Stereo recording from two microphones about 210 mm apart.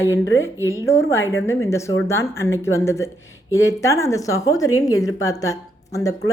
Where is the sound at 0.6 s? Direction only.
15° right (ahead or behind).